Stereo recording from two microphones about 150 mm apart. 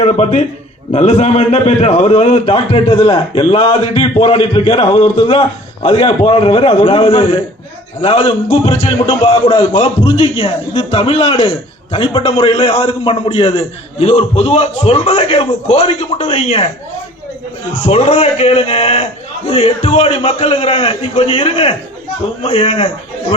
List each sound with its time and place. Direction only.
0.0 s a man's voice: 50° left (ahead or behind)
12.5 s a man's voice: 45° left (ahead or behind)
17.8 s a man's voice: 45° left (ahead or behind)